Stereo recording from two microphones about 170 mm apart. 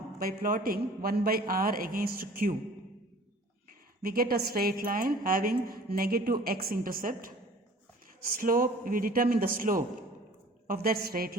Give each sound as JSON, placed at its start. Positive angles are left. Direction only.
{"t": 0.2, "sound": "a woman's voice", "side_deg": -60}
{"t": 4.0, "sound": "a woman's voice", "side_deg": -60}
{"t": 8.4, "sound": "a woman's voice", "side_deg": -55}